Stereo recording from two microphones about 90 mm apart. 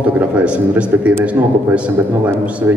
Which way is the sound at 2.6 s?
20° right (ahead or behind).